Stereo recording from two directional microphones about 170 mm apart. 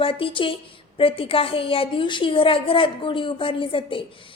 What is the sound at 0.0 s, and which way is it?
A woman's voice, 30° left (ahead or behind).